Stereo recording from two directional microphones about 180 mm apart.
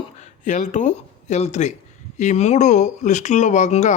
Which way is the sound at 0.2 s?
40° left (ahead or behind).